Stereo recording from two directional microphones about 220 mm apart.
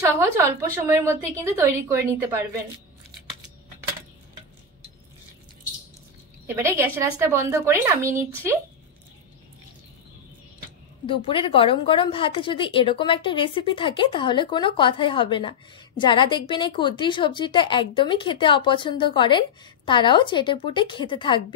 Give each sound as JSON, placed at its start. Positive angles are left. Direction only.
{"t": 0.0, "sound": "a woman's voice", "side_deg": -15}
{"t": 6.4, "sound": "a woman's voice", "side_deg": -10}
{"t": 11.1, "sound": "a woman's voice", "side_deg": 25}